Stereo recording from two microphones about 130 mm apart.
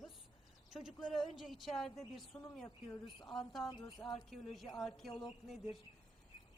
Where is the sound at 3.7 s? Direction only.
30° left (ahead or behind).